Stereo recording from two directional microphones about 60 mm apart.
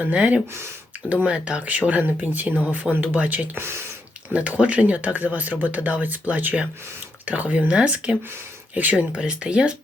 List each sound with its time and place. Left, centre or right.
0.0 s speech: right
3.6 s speech: right
4.3 s speech: right